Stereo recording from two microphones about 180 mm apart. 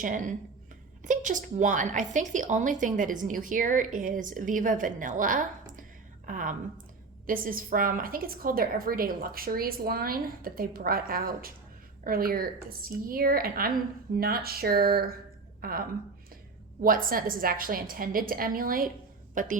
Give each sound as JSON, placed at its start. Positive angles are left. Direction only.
{"t": 0.0, "sound": "a woman's voice", "side_deg": -45}